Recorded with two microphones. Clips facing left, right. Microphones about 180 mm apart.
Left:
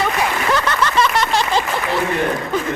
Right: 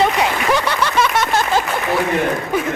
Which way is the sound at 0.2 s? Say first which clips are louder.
Right 2 dB; 15° right (ahead or behind).